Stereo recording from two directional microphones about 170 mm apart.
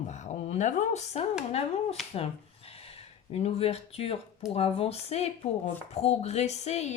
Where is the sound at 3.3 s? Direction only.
40° left (ahead or behind).